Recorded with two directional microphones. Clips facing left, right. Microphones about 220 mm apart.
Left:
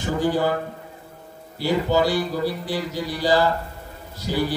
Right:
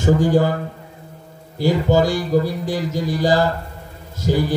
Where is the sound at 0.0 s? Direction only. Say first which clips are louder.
Right 6 dB; 45° right (ahead or behind).